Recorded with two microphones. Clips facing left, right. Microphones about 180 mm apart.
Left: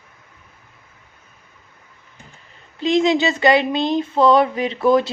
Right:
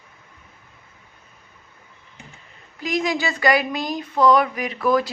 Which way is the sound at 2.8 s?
25° left (ahead or behind).